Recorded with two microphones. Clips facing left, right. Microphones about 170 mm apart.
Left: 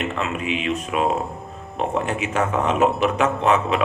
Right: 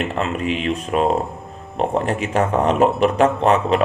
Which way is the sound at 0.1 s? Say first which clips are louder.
Right 3 dB; 35° right (ahead or behind).